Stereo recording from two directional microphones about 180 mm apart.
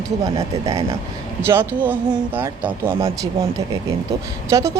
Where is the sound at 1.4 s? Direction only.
15° right (ahead or behind).